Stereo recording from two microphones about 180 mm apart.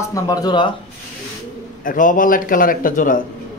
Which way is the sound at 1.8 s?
45° left (ahead or behind).